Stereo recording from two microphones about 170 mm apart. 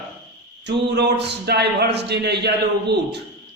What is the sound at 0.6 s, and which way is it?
A man's voice, 80° right.